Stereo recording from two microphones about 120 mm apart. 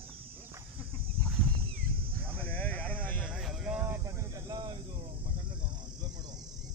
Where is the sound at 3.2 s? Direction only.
5° right (ahead or behind).